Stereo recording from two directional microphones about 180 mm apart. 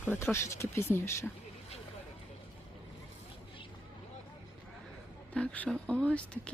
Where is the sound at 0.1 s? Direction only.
15° left (ahead or behind).